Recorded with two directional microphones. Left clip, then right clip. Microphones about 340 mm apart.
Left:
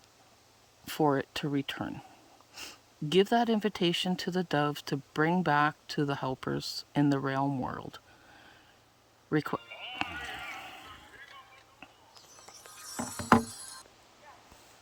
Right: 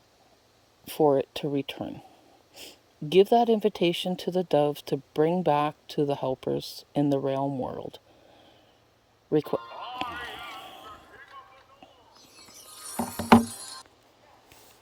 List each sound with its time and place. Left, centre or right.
0.9 s speech: left
9.3 s speech: left
11.2 s basketball bounce: centre
12.4 s music: right